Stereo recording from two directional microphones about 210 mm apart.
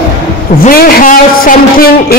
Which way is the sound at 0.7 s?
45° left (ahead or behind).